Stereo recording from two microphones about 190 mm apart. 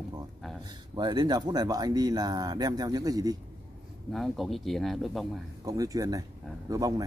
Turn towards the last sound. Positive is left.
turn(degrees=-20)  # may be behind; listen again after turning